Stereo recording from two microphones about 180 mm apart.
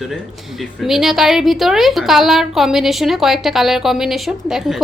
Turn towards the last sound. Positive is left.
turn(degrees=0)  # may be behind; listen again after turning